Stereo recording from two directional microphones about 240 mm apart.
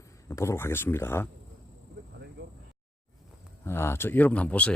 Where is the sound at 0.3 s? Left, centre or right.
Centre.